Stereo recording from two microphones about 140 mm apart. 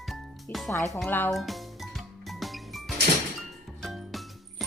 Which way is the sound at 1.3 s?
Centre (ahead or behind).